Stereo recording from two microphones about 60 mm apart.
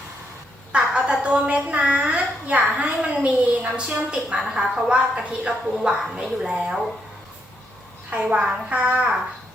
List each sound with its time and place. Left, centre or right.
0.9 s a woman's voice: centre
8.1 s a woman's voice: centre